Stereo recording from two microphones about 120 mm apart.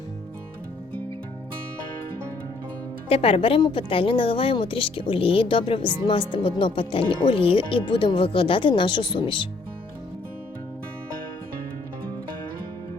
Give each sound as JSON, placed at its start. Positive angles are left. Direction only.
{"t": 3.1, "sound": "a woman's voice", "side_deg": 55}